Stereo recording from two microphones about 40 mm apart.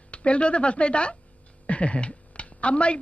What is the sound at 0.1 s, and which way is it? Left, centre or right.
Speech, left.